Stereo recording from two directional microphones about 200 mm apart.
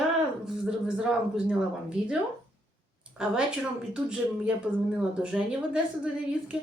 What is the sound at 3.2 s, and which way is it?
Speech, 5° right (ahead or behind).